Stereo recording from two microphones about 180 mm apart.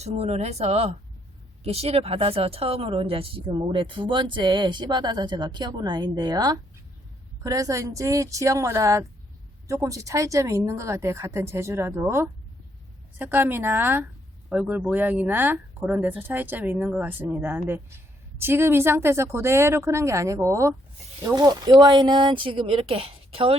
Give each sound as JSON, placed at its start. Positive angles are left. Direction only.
{"t": 0.0, "sound": "speech", "side_deg": -35}